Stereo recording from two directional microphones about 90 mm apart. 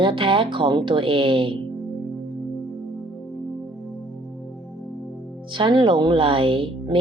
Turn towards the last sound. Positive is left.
turn(degrees=-75)  # may be behind; listen again after turning